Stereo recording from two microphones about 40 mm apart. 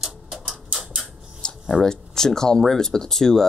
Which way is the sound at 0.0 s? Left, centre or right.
Centre.